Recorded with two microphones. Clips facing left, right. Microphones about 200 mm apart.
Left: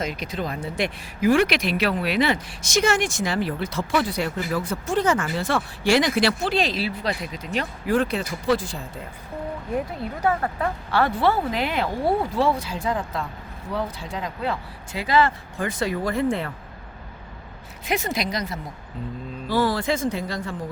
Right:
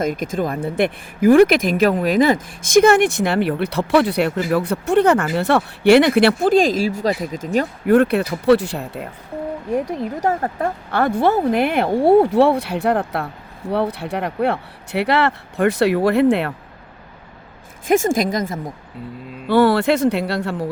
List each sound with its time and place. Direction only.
0.0 s speech: 50° right (ahead or behind)
7.9 s speech: 60° right (ahead or behind)
10.2 s speech: 40° right (ahead or behind)
12.2 s speech: 65° right (ahead or behind)
17.8 s speech: 45° right (ahead or behind)
19.5 s speech: 65° right (ahead or behind)